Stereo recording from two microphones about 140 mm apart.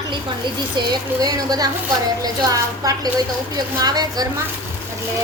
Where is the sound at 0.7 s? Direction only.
30° right (ahead or behind).